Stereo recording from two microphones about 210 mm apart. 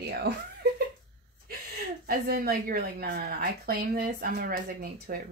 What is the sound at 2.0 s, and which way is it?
Speech, 45° right (ahead or behind).